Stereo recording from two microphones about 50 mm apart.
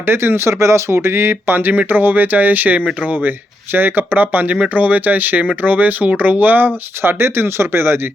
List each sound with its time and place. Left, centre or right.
0.0 s speech: right
0.9 s speech: right
3.2 s speech: right
7.2 s speech: right